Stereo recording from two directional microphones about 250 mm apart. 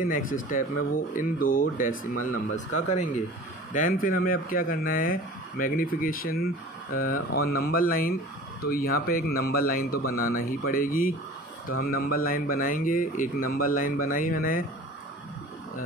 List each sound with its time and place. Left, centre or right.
0.0 s speech: left